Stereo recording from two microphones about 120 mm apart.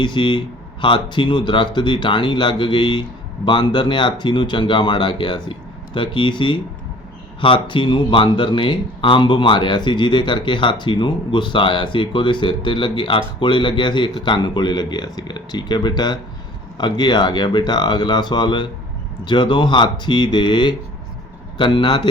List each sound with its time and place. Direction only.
0.0 s speech: 40° left (ahead or behind)